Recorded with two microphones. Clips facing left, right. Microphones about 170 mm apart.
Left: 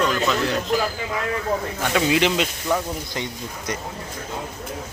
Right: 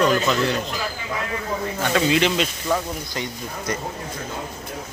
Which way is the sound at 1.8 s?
15° left (ahead or behind).